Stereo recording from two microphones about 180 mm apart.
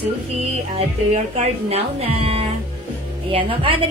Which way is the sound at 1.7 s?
35° right (ahead or behind).